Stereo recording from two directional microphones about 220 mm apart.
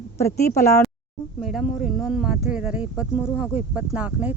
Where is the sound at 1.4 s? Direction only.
Centre (ahead or behind).